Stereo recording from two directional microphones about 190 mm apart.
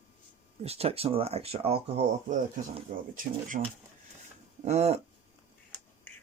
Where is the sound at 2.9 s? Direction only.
45° right (ahead or behind).